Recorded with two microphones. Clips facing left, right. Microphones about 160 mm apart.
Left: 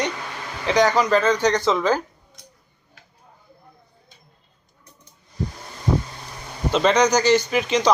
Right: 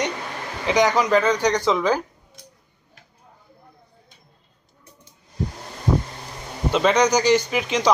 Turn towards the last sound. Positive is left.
turn(degrees=-10)  # may be behind; listen again after turning